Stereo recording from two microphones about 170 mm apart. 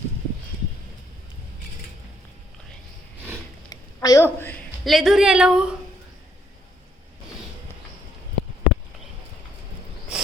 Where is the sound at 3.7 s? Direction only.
20° left (ahead or behind).